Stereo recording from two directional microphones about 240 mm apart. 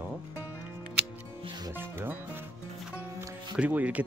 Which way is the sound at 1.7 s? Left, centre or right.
Centre.